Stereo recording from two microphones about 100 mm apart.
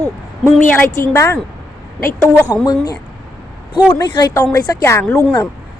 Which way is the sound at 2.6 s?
40° left (ahead or behind).